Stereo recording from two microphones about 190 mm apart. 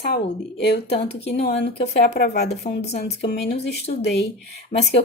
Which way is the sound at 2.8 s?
35° left (ahead or behind).